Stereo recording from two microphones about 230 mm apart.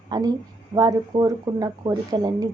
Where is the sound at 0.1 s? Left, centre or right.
Centre.